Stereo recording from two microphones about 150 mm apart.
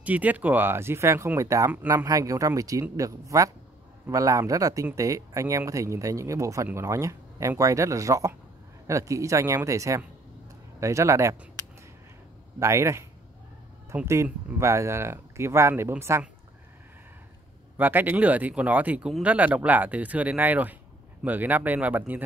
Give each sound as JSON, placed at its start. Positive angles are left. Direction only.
{"t": 0.0, "sound": "speech", "side_deg": -10}
{"t": 12.5, "sound": "speech", "side_deg": -20}
{"t": 17.7, "sound": "speech", "side_deg": -10}